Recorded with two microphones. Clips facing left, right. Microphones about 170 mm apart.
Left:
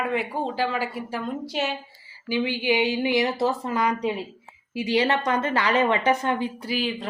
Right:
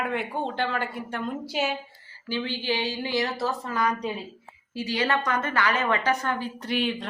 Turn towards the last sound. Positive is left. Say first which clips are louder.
# even
turn(degrees=0)  # may be behind; listen again after turning